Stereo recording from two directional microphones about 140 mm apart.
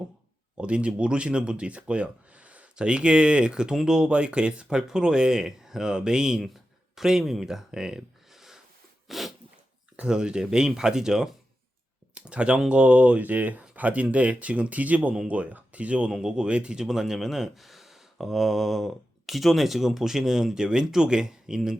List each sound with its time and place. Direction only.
0.5 s speech: 10° right (ahead or behind)
9.0 s sneeze: centre (ahead or behind)
10.0 s speech: 5° right (ahead or behind)